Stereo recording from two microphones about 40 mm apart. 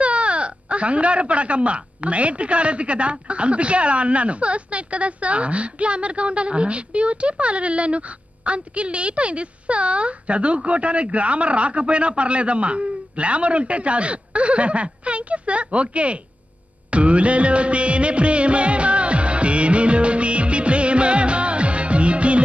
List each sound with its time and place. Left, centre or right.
0.0 s speech: right
16.9 s music of bollywood: right